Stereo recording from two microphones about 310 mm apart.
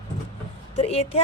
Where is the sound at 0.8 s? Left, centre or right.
Centre.